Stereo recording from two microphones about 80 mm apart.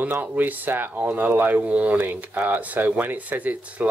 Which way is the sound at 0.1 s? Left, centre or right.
Right.